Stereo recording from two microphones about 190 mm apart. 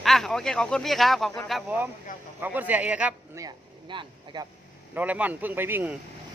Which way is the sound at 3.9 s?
25° right (ahead or behind).